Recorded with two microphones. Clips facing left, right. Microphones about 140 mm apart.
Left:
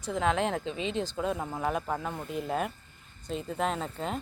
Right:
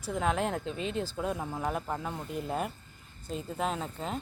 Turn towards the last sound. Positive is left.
turn(degrees=0)  # may be behind; listen again after turning